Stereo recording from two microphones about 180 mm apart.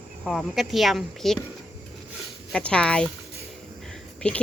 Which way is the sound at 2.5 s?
5° left (ahead or behind).